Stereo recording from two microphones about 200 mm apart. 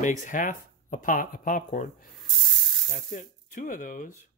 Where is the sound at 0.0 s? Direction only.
40° left (ahead or behind).